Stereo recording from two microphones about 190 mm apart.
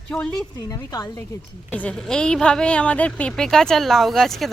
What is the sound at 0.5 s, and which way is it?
Speech, 20° left (ahead or behind).